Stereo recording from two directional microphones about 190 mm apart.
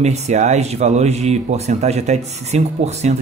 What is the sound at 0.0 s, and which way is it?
A man's voice, 35° right (ahead or behind).